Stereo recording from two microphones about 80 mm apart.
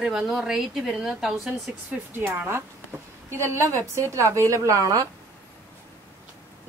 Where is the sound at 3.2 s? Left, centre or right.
Right.